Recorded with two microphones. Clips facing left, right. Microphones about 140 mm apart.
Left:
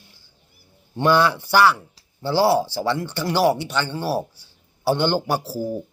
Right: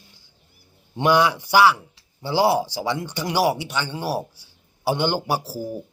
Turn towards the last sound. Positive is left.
turn(degrees=-10)  # may be behind; listen again after turning